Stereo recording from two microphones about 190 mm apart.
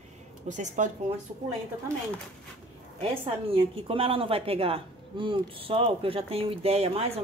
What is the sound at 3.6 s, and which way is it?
Speech, 30° right (ahead or behind).